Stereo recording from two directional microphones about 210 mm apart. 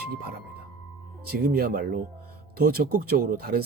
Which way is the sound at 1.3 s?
45° right (ahead or behind).